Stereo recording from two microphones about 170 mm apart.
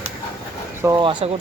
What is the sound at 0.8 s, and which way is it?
Speech, 25° right (ahead or behind).